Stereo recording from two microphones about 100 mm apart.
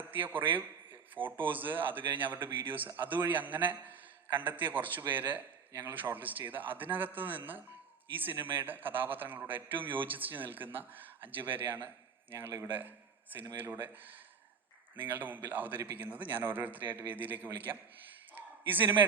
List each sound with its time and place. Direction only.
0.1 s speech: 20° right (ahead or behind)
1.5 s speech: 20° right (ahead or behind)
13.6 s speech: 25° right (ahead or behind)
14.9 s speech: 20° right (ahead or behind)
18.3 s a sound: 20° right (ahead or behind)